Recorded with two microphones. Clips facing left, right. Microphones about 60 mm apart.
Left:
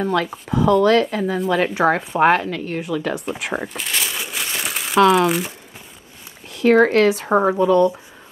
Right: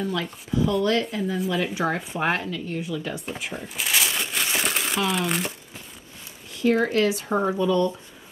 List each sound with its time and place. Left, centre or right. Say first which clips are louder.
0.0 s a woman's voice: left 7 dB; left
1.7 s a woman's voice: left 8 dB; left
3.7 s crumpling: even; centre
4.9 s speech: left 14 dB; left
6.6 s a woman's voice: left 7 dB; left
7.2 s speech: left 7 dB; left